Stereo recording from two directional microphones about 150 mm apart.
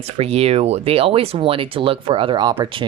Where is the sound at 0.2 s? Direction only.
45° right (ahead or behind).